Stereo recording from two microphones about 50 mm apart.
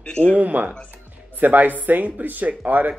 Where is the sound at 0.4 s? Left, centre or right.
Right.